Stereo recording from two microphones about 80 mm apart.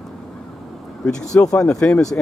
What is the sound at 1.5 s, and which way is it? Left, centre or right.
Speech, centre.